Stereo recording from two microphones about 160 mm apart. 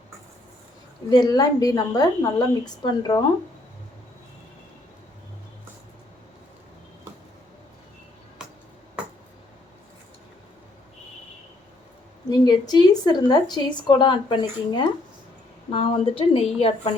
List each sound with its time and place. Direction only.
1.1 s a woman's voice: 25° left (ahead or behind)
12.3 s a woman's voice: 25° left (ahead or behind)